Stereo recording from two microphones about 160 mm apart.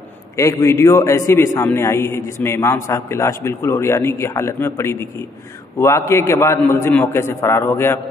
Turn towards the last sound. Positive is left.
turn(degrees=15)  # may be behind; listen again after turning